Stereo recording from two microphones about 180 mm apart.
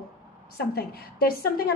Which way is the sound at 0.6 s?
60° left (ahead or behind).